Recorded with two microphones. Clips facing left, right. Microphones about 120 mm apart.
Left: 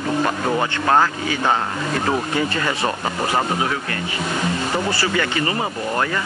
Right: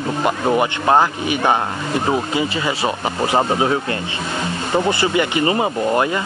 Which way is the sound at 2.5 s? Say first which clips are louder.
Right 1 dB; 15° right (ahead or behind).